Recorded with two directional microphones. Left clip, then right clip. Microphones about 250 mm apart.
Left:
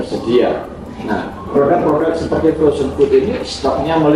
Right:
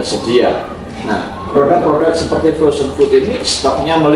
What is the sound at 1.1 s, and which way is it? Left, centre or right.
A man's voice, centre.